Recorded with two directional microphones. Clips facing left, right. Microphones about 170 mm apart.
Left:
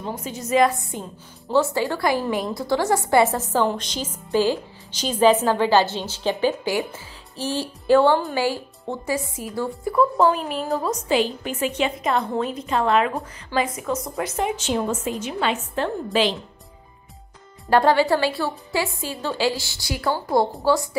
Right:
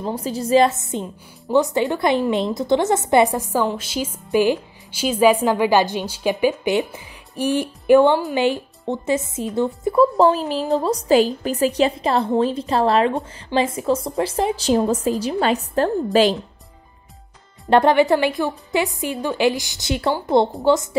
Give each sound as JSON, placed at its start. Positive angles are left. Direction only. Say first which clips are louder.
{"t": 0.0, "sound": "a woman's voice", "louder": "right 6 dB", "side_deg": -35}
{"t": 17.6, "sound": "a woman's voice", "louder": "right 3 dB", "side_deg": -20}